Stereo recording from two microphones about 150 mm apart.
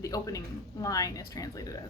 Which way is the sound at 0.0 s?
25° left (ahead or behind).